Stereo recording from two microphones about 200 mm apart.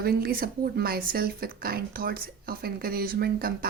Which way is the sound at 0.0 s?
50° right (ahead or behind).